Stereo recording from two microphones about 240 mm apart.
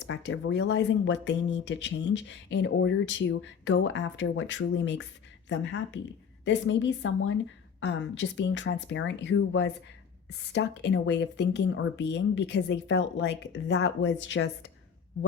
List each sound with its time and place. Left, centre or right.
0.1 s speech: left